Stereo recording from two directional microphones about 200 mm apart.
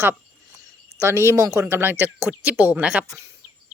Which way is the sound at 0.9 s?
15° right (ahead or behind).